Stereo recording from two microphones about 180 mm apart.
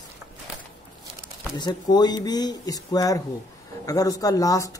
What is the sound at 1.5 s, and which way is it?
Speech, 25° left (ahead or behind).